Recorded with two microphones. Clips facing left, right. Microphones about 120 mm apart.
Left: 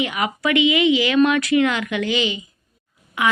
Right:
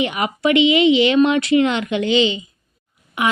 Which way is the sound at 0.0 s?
25° right (ahead or behind).